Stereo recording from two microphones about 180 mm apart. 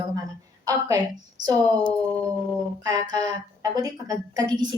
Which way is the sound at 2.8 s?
20° right (ahead or behind).